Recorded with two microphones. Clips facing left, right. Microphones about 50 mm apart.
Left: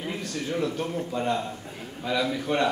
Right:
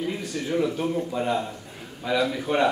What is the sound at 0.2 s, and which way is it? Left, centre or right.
A man's voice, centre.